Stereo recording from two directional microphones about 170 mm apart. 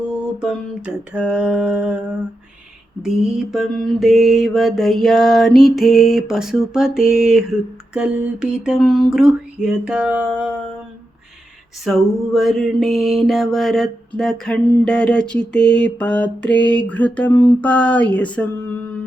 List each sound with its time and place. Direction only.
0.3 s mantra: 5° right (ahead or behind)
11.9 s mantra: centre (ahead or behind)
16.0 s a sound: 5° left (ahead or behind)